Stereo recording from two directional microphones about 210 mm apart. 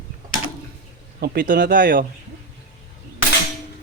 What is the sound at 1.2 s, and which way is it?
Speech, 45° right (ahead or behind).